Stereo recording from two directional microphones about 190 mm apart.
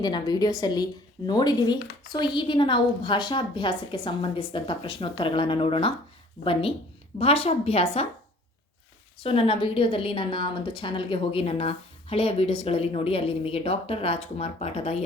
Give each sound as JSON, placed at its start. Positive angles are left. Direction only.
{"t": 0.0, "sound": "a woman's voice", "side_deg": 20}
{"t": 9.2, "sound": "a woman's voice", "side_deg": 30}